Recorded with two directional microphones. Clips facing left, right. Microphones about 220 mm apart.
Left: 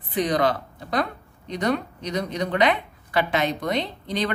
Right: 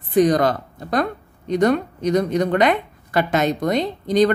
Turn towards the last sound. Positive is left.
turn(degrees=-45)  # may be behind; listen again after turning